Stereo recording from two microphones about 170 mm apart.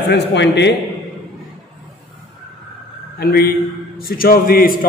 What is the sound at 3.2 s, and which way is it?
A man's voice, 65° left (ahead or behind).